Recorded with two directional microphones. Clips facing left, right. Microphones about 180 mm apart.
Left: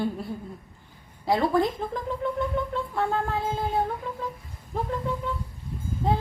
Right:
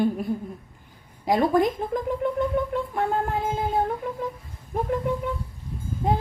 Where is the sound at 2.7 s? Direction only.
15° right (ahead or behind).